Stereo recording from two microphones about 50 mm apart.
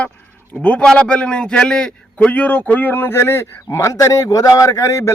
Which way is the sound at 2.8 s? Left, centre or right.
Left.